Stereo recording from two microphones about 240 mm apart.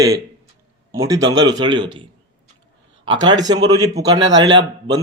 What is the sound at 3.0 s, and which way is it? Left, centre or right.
Speech, centre.